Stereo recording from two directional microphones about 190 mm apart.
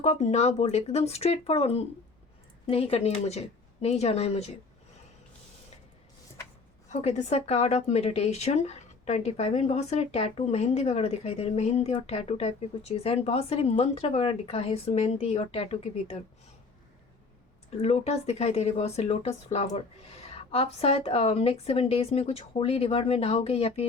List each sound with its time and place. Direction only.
0.0 s speech: 35° left (ahead or behind)
6.9 s speech: 35° left (ahead or behind)
17.7 s speech: 35° left (ahead or behind)